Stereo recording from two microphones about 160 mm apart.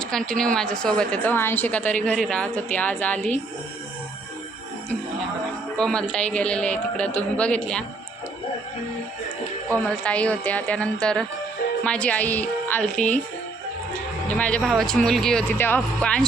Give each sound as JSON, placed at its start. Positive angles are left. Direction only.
{"t": 0.0, "sound": "a woman's voice", "side_deg": 5}
{"t": 5.7, "sound": "a woman's voice", "side_deg": 5}
{"t": 9.7, "sound": "a woman's voice", "side_deg": 5}
{"t": 14.3, "sound": "speech", "side_deg": 10}